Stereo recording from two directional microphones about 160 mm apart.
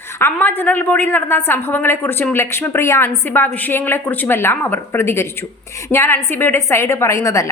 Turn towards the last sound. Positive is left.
turn(degrees=20)  # may be behind; listen again after turning